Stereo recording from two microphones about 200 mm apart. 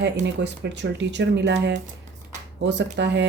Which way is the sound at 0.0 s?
60° right (ahead or behind).